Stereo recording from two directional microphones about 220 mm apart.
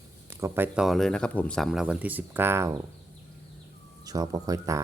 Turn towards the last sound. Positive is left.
turn(degrees=-15)  # may be behind; listen again after turning